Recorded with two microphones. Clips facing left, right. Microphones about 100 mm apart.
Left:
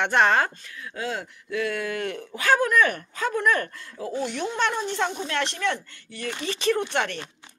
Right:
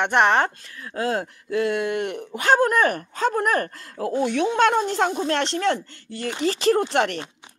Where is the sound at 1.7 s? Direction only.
25° right (ahead or behind).